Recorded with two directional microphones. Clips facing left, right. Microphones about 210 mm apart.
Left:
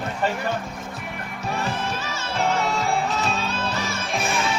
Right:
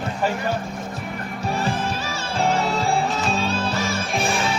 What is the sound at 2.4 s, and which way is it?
Music, 30° right (ahead or behind).